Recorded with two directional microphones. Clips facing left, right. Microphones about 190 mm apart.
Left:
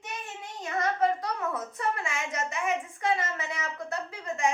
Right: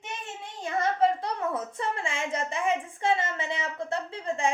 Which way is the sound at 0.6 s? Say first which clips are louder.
Right 2 dB; 30° right (ahead or behind).